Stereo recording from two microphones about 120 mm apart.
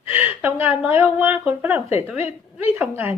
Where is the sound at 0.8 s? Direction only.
15° right (ahead or behind).